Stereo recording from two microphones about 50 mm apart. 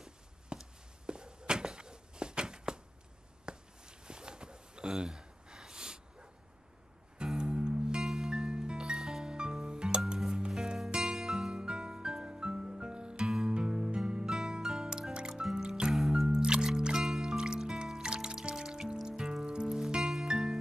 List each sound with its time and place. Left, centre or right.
0.0 s a sound: centre
7.3 s music: centre
16.3 s music: centre